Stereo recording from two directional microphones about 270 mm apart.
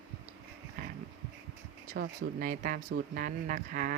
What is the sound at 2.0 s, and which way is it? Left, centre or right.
Speech, right.